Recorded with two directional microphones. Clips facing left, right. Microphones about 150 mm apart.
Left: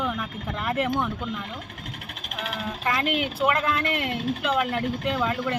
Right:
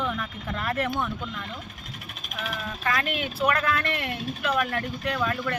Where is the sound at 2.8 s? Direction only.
20° left (ahead or behind).